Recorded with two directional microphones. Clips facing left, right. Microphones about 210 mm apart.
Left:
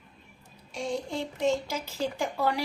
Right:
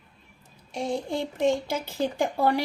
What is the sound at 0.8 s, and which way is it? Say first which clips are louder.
Speech: right 3 dB; 55° right (ahead or behind).